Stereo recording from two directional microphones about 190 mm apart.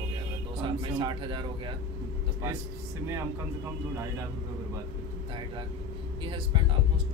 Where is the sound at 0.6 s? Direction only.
25° right (ahead or behind).